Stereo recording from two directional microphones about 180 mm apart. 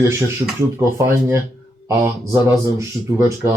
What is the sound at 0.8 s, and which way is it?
Speech, 15° right (ahead or behind).